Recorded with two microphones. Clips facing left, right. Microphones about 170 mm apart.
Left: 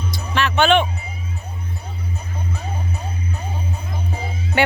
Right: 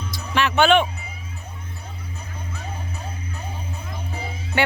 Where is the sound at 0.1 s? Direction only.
10° right (ahead or behind).